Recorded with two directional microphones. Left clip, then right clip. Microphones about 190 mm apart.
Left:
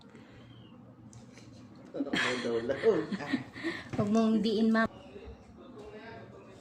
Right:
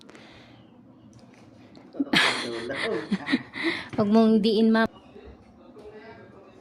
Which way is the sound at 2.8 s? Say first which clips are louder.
Even; 60° right (ahead or behind).